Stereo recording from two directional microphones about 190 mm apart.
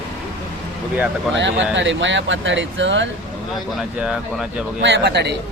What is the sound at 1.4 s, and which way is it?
Speech, 75° right (ahead or behind).